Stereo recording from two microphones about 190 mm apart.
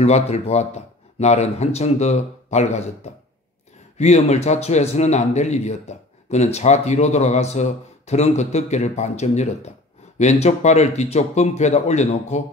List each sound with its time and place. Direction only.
0.0 s speech: 35° left (ahead or behind)